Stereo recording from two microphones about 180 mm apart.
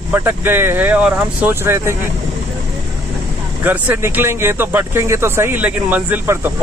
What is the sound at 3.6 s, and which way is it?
Speech, 10° right (ahead or behind).